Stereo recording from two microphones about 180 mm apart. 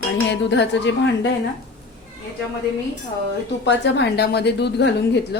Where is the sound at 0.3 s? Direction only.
75° left (ahead or behind).